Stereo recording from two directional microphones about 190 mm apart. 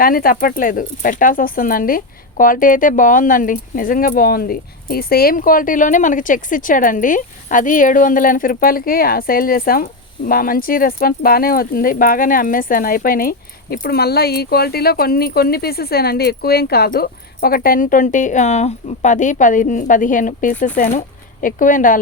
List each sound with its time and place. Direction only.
0.0 s speech: 50° left (ahead or behind)